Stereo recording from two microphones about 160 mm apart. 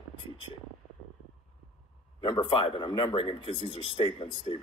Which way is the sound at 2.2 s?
30° left (ahead or behind).